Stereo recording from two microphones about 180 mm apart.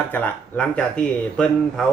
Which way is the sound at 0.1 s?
10° left (ahead or behind).